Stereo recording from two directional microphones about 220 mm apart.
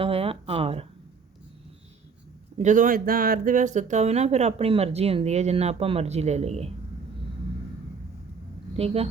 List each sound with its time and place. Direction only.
0.0 s speech: 25° right (ahead or behind)
2.6 s speech: 35° right (ahead or behind)
8.7 s a woman's voice: 25° right (ahead or behind)